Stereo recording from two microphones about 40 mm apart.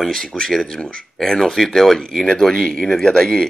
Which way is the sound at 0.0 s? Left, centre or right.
Centre.